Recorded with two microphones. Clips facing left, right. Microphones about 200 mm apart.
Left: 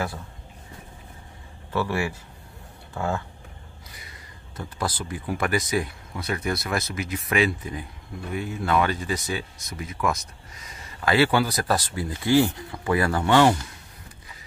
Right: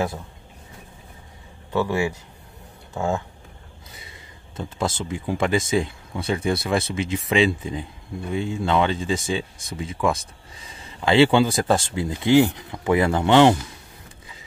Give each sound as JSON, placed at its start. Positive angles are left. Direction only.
{"t": 1.7, "sound": "speech", "side_deg": -15}